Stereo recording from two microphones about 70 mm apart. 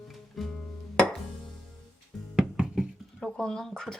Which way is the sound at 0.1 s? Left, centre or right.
Centre.